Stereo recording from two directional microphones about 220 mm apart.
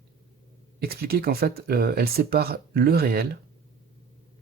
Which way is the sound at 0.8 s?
45° right (ahead or behind).